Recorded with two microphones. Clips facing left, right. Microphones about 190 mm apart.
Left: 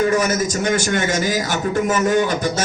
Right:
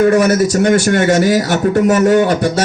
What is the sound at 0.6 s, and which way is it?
A man's voice, 55° right (ahead or behind).